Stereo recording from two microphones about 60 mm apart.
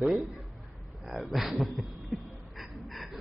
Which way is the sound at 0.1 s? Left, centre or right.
Centre.